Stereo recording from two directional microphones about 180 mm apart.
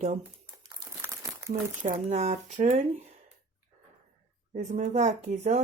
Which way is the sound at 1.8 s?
40° right (ahead or behind).